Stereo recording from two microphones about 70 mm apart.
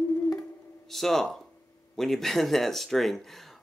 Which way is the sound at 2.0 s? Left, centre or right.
Centre.